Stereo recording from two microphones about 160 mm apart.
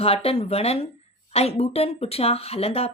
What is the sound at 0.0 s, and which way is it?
Speech, 35° left (ahead or behind).